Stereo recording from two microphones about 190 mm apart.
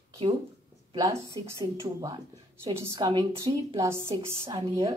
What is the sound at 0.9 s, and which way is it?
A woman's voice, 20° right (ahead or behind).